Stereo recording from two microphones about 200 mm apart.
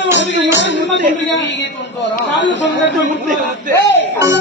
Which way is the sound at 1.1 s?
65° left (ahead or behind).